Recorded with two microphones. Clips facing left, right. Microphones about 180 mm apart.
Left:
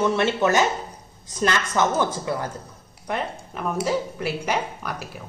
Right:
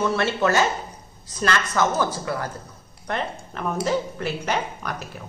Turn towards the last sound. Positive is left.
turn(degrees=5)  # may be behind; listen again after turning